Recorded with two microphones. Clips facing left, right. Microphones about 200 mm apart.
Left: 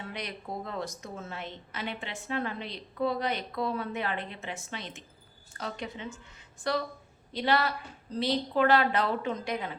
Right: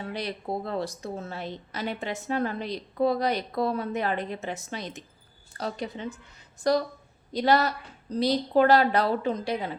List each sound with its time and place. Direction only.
0.0 s a woman's voice: 35° right (ahead or behind)